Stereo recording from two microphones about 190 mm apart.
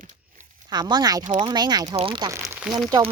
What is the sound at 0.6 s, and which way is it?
Speech, 20° right (ahead or behind).